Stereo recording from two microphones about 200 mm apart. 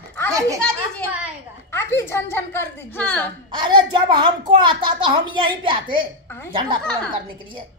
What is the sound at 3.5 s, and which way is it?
A woman's voice, 25° right (ahead or behind).